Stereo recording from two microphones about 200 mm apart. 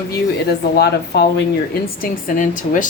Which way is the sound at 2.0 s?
40° left (ahead or behind).